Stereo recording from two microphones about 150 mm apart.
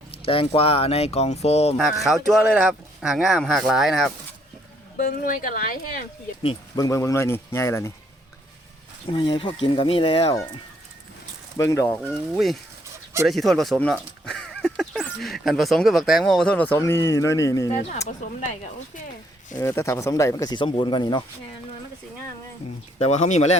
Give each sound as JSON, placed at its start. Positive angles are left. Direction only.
{"t": 0.2, "sound": "speech", "side_deg": 40}
{"t": 2.0, "sound": "speech", "side_deg": 0}
{"t": 4.9, "sound": "speech", "side_deg": 65}
{"t": 6.7, "sound": "speech", "side_deg": 20}
{"t": 9.0, "sound": "speech", "side_deg": 35}
{"t": 11.5, "sound": "speech", "side_deg": 20}
{"t": 12.3, "sound": "speech", "side_deg": 0}
{"t": 19.5, "sound": "speech", "side_deg": 15}
{"t": 23.0, "sound": "speech", "side_deg": 45}